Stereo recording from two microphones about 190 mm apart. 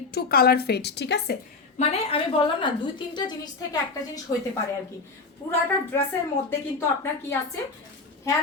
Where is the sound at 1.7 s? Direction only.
30° left (ahead or behind).